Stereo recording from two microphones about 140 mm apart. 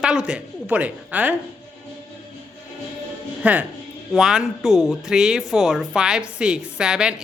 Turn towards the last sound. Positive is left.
turn(degrees=-5)  # may be behind; listen again after turning